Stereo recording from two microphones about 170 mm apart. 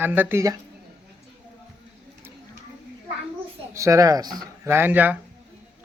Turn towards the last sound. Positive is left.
turn(degrees=-10)  # may be behind; listen again after turning